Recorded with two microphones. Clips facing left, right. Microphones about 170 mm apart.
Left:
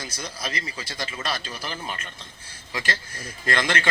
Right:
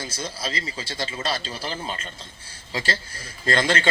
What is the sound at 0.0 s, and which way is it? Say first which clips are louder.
Speech: right 3 dB; 25° right (ahead or behind).